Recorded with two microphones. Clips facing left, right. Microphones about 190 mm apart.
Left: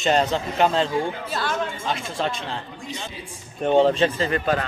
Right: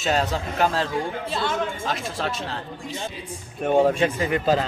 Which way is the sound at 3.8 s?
10° right (ahead or behind).